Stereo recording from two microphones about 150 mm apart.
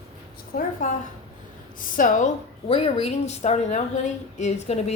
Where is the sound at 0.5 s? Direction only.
70° left (ahead or behind).